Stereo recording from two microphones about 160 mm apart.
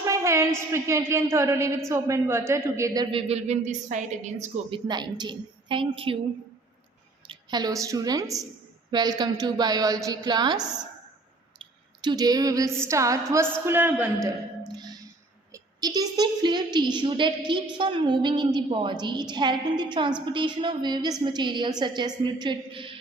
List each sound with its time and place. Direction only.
0.0 s a woman's voice: 20° right (ahead or behind); by 4.4 s 50° right (ahead or behind)
4.7 s a woman's voice: 25° right (ahead or behind)
7.3 s a woman's voice: 25° right (ahead or behind)
11.6 s a sound: 25° right (ahead or behind)
13.7 s a woman's voice: 10° right (ahead or behind)
14.7 s music: 25° right (ahead or behind)
15.5 s a woman's voice: 25° right (ahead or behind)